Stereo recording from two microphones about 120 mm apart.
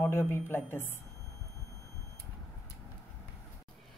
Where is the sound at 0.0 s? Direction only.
20° left (ahead or behind).